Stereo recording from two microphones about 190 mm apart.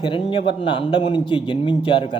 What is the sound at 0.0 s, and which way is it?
A man's voice, 25° left (ahead or behind).